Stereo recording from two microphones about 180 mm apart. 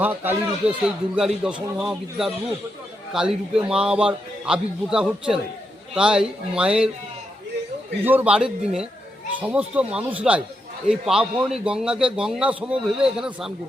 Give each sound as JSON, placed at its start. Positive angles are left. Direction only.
{"t": 0.0, "sound": "a man's voice", "side_deg": -10}
{"t": 8.0, "sound": "a man's voice", "side_deg": -10}